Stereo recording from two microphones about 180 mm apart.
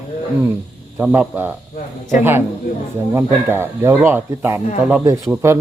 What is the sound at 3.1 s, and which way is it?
Speech, 15° right (ahead or behind).